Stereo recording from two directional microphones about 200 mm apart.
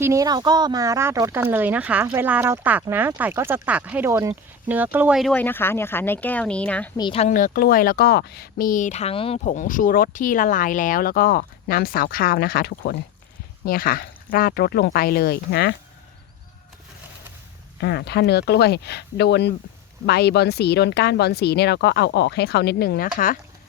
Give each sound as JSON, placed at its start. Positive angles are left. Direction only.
{"t": 0.0, "sound": "speech", "side_deg": -15}
{"t": 6.9, "sound": "speech", "side_deg": 25}
{"t": 17.7, "sound": "speech", "side_deg": 55}